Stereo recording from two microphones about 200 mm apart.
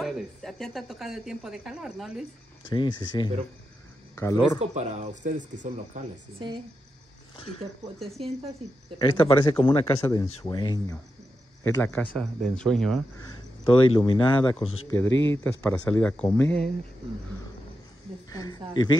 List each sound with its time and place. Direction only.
0.0 s a woman's voice: centre (ahead or behind)
2.7 s speech: 25° left (ahead or behind)
4.6 s speech: 35° right (ahead or behind)
8.9 s speech: 25° left (ahead or behind)
11.6 s a woman's voice: 10° left (ahead or behind)
13.7 s speech: 25° left (ahead or behind)
14.9 s speech: 15° left (ahead or behind)
18.3 s speech: 20° left (ahead or behind)